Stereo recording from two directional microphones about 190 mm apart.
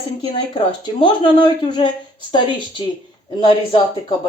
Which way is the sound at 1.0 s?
25° left (ahead or behind).